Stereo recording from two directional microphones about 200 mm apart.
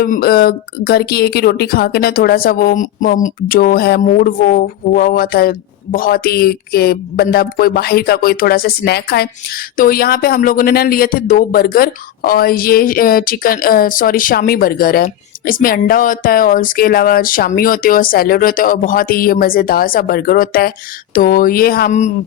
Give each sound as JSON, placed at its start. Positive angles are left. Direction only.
{"t": 0.0, "sound": "speech", "side_deg": 50}